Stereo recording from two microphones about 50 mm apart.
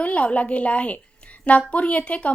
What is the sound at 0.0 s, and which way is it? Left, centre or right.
A woman's voice, left.